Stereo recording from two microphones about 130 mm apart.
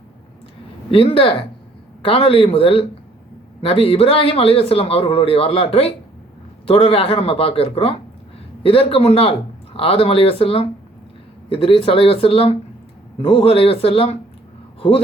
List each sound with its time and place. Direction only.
0.9 s a man's voice: 45° left (ahead or behind)